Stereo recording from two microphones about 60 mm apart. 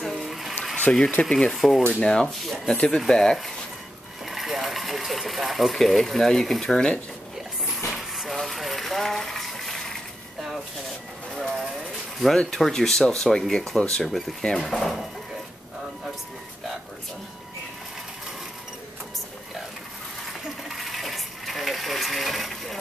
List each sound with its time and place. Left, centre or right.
0.0 s a sound: centre
0.9 s speech: centre
1.2 s speech: centre
1.8 s speech: centre
4.3 s speech: centre
7.9 s a sound: centre
12.4 s speech: centre
20.7 s sewing machine: centre